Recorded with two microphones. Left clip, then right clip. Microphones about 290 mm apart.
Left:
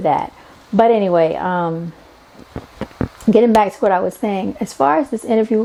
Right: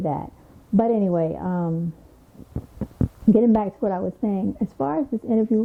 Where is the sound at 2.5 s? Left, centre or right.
Centre.